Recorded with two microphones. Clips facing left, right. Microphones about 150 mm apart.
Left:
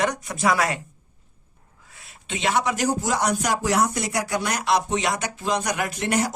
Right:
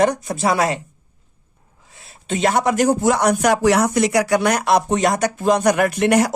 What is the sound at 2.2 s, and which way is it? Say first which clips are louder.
Speech: right 6 dB; 45° right (ahead or behind).